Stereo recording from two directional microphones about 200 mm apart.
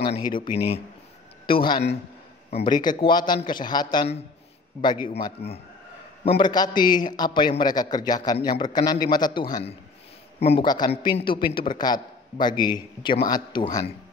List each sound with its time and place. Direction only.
0.0 s a man's voice: 25° left (ahead or behind)